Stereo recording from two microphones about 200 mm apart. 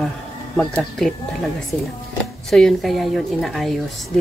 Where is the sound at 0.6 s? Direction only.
5° left (ahead or behind).